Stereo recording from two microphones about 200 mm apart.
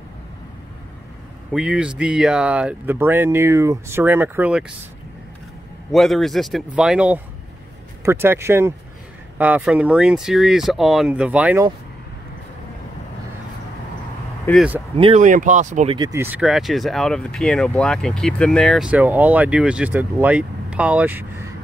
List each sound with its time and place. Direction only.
1.5 s speech: 5° right (ahead or behind)
5.9 s speech: centre (ahead or behind)
14.5 s speech: 5° right (ahead or behind)
15.0 s speech: 35° right (ahead or behind)
16.0 s speech: 15° right (ahead or behind)